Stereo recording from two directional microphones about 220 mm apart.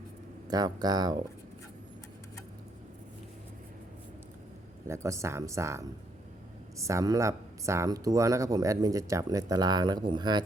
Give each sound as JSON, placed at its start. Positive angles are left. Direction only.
{"t": 0.4, "sound": "speech", "side_deg": -15}
{"t": 4.9, "sound": "speech", "side_deg": -15}